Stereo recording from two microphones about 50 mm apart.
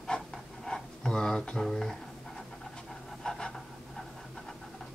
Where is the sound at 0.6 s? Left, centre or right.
Centre.